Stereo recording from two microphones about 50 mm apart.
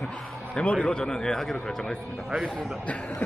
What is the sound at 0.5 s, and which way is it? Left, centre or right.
Speech, left.